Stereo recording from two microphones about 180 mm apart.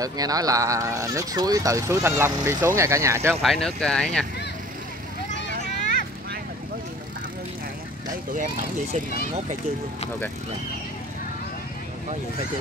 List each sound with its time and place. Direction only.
0.0 s speech: 20° right (ahead or behind)
3.4 s speech: centre (ahead or behind)
8.3 s speech: 45° right (ahead or behind)